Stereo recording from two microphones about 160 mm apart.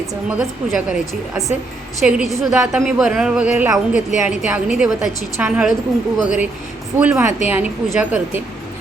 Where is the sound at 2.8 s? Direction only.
5° right (ahead or behind).